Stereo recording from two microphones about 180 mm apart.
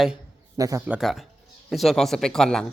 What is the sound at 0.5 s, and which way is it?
Speech, 20° right (ahead or behind).